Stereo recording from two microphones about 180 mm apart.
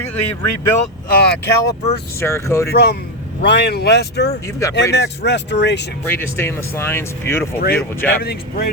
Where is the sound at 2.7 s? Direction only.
60° left (ahead or behind).